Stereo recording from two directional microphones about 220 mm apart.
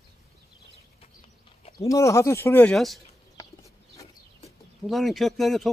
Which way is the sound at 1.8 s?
15° left (ahead or behind).